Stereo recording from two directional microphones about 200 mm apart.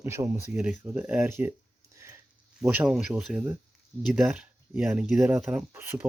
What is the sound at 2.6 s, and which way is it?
Speech, 5° right (ahead or behind).